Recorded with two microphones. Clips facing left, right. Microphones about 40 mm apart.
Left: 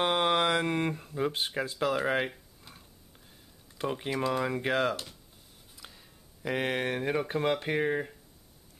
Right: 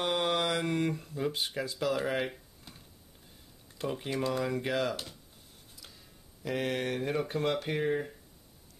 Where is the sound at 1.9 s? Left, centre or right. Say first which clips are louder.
Left 3 dB; centre.